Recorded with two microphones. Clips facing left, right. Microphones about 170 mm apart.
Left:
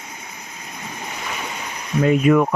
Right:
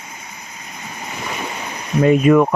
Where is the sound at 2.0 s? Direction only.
35° right (ahead or behind).